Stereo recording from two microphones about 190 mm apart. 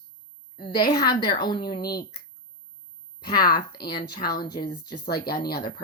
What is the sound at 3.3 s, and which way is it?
Speech, 20° left (ahead or behind).